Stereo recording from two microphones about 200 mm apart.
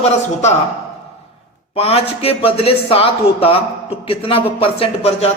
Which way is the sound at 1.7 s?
30° left (ahead or behind).